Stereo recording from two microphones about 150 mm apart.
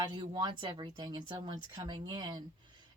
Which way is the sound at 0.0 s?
30° right (ahead or behind).